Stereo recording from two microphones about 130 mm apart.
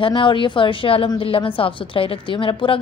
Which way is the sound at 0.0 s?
40° left (ahead or behind).